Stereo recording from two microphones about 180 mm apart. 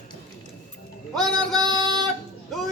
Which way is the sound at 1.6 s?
20° right (ahead or behind).